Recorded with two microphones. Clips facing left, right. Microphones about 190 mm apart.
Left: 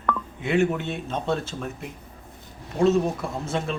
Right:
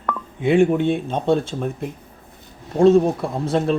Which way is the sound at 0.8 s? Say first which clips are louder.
Right 11 dB; centre (ahead or behind).